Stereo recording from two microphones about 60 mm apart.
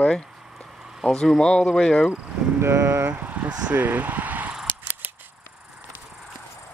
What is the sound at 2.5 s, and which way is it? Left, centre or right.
Speech, right.